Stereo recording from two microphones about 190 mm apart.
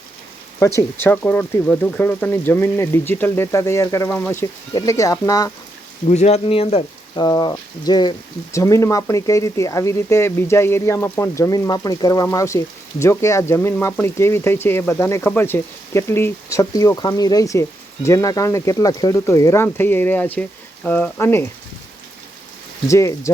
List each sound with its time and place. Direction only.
0.8 s speech: 10° left (ahead or behind)
6.1 s speech: 35° left (ahead or behind); by 21.5 s 10° left (ahead or behind)
22.9 s speech: 15° left (ahead or behind)